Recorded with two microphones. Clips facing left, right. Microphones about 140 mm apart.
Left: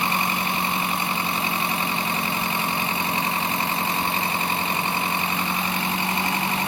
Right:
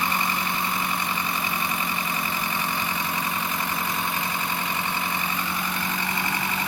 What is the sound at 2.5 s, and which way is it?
Vehicle, 25° left (ahead or behind).